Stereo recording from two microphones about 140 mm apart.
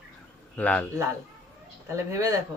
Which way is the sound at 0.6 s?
10° left (ahead or behind).